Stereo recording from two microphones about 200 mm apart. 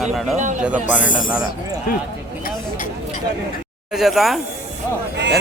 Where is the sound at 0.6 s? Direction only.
5° right (ahead or behind).